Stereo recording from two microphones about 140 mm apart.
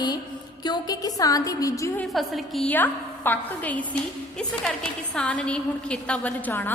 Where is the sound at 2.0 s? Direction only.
Centre (ahead or behind).